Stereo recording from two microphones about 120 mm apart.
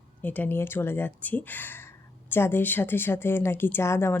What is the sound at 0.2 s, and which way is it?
A woman's voice, 15° left (ahead or behind).